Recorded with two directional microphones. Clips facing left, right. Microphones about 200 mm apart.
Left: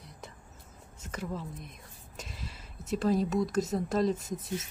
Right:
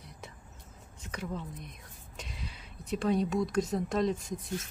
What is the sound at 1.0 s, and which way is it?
Speech, centre (ahead or behind).